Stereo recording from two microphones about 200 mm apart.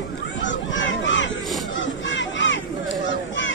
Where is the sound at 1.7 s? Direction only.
65° left (ahead or behind).